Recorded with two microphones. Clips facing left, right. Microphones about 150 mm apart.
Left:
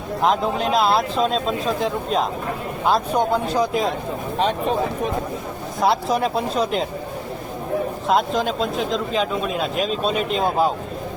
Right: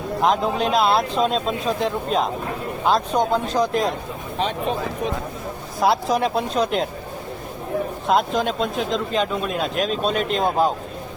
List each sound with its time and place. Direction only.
0.2 s speech: centre (ahead or behind)
5.8 s speech: centre (ahead or behind)
8.0 s speech: centre (ahead or behind)